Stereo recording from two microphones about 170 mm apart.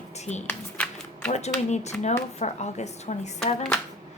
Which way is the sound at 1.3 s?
40° left (ahead or behind).